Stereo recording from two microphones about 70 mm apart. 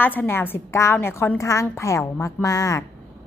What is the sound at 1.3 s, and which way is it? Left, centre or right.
A woman's voice, left.